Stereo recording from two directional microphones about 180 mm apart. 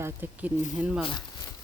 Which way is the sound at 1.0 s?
25° left (ahead or behind).